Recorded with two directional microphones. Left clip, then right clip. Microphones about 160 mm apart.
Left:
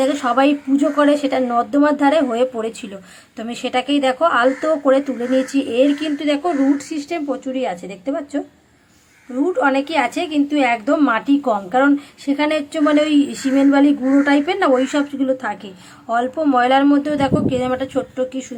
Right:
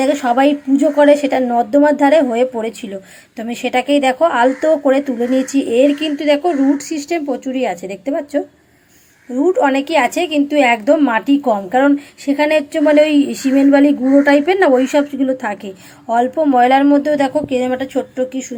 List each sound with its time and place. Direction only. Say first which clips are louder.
0.0 s speech: right 3 dB; 15° right (ahead or behind)
9.4 s a woman's voice: right 3 dB; 20° right (ahead or behind)